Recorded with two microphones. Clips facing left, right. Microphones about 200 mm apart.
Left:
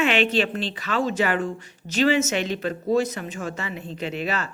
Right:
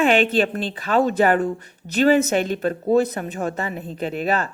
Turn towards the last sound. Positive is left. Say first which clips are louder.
# right 5 dB
turn(degrees=-50)  # may be behind; listen again after turning